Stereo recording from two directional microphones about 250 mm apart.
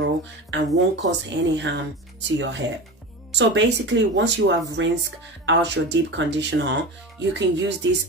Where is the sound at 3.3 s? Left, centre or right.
Right.